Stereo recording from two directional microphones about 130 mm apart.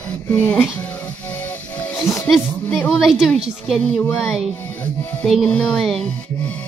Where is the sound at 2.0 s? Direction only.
Centre (ahead or behind).